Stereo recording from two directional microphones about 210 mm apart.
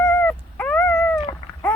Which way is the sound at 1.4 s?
30° left (ahead or behind).